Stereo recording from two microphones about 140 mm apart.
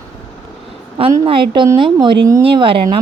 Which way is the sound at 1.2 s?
35° right (ahead or behind).